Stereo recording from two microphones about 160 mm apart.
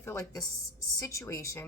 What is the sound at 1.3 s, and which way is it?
Speech, 20° left (ahead or behind).